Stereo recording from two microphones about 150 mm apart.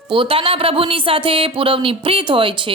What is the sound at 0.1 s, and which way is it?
Speech, 35° right (ahead or behind).